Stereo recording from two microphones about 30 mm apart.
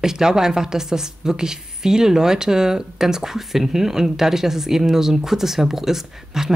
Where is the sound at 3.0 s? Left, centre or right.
Centre.